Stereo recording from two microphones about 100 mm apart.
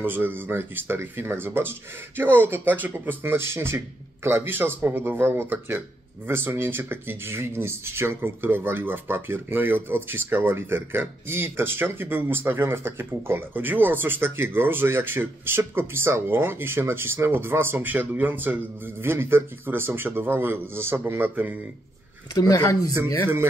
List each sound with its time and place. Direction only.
0.0 s speech: 20° right (ahead or behind)
22.3 s speech: 40° left (ahead or behind)